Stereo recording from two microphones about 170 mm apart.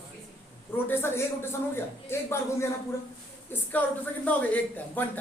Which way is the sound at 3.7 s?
10° left (ahead or behind).